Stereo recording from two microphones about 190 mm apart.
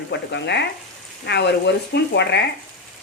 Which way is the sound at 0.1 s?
65° left (ahead or behind).